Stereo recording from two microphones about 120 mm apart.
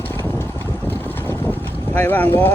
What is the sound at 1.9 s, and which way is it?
Speech, 15° left (ahead or behind).